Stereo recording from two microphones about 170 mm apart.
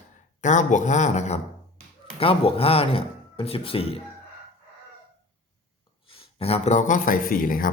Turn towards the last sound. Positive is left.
turn(degrees=55)  # may be behind; listen again after turning